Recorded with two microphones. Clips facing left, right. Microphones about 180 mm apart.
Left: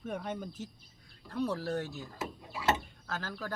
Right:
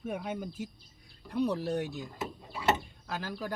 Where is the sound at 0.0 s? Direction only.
10° right (ahead or behind).